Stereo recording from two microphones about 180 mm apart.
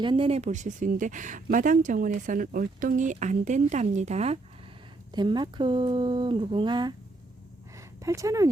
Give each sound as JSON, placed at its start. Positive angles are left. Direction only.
{"t": 0.0, "sound": "speech", "side_deg": -30}
{"t": 5.1, "sound": "speech", "side_deg": -25}
{"t": 7.8, "sound": "a sound", "side_deg": -20}